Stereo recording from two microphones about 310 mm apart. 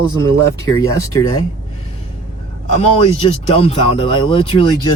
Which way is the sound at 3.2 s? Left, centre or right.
Centre.